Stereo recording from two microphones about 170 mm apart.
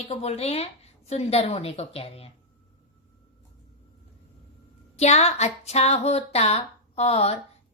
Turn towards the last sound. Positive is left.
turn(degrees=40)  # may be behind; listen again after turning